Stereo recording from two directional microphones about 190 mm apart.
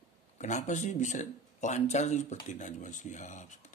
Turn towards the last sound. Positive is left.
turn(degrees=40)  # may be behind; listen again after turning